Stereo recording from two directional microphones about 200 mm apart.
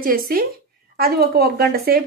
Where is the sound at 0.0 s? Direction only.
45° right (ahead or behind).